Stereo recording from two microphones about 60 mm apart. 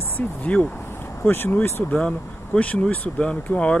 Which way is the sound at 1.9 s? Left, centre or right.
Centre.